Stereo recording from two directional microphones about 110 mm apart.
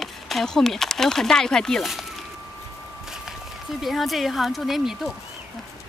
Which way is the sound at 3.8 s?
Centre (ahead or behind).